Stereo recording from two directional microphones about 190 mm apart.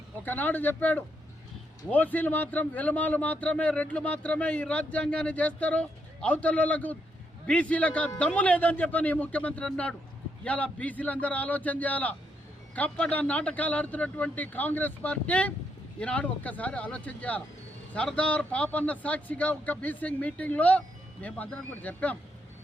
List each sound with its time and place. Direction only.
0.3 s a man's voice: 10° left (ahead or behind)